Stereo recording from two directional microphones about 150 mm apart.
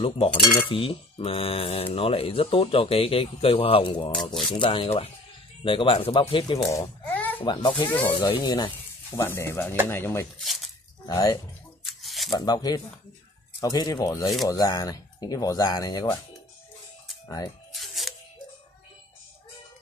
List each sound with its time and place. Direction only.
0.6 s speech: 35° left (ahead or behind)
4.2 s speech: 5° left (ahead or behind)
4.6 s speech: 35° left (ahead or behind)
7.1 s a sound: 10° left (ahead or behind)
7.4 s speech: 30° left (ahead or behind)
9.1 s speech: 20° left (ahead or behind)
10.4 s speech: centre (ahead or behind)
11.1 s speech: 25° left (ahead or behind)
11.8 s shuffling cards: centre (ahead or behind)
12.3 s speech: 30° left (ahead or behind)
17.7 s music: centre (ahead or behind)